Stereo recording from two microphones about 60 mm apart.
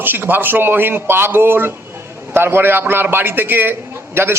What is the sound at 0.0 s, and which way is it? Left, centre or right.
A man's voice, right.